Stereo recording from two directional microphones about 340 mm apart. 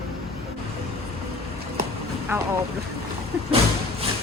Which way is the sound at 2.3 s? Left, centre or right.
Centre.